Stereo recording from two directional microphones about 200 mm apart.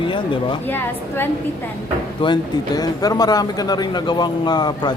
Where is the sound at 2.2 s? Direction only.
20° left (ahead or behind).